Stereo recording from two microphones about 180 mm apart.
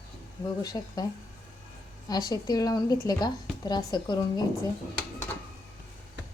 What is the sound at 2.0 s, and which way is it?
A woman's voice, 20° left (ahead or behind).